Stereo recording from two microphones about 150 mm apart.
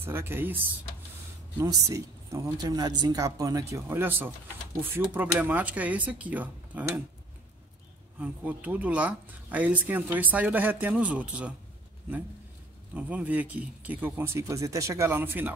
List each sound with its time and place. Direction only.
0.0 s speech: 15° right (ahead or behind)
1.6 s speech: 20° right (ahead or behind)
8.2 s speech: 10° right (ahead or behind)
12.9 s speech: 10° right (ahead or behind)